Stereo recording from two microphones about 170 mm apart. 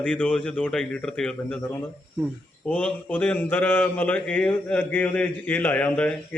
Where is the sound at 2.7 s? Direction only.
5° left (ahead or behind).